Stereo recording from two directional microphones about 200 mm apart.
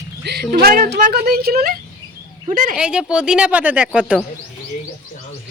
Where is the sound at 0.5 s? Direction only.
50° right (ahead or behind).